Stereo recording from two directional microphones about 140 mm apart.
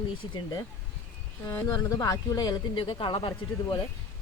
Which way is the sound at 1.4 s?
25° left (ahead or behind).